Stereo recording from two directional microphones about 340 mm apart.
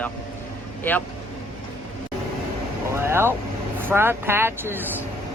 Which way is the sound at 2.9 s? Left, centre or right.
Centre.